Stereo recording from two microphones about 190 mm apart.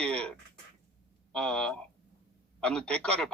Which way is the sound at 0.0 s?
5° left (ahead or behind).